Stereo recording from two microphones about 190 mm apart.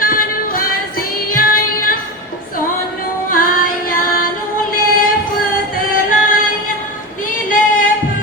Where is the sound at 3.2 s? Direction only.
45° left (ahead or behind).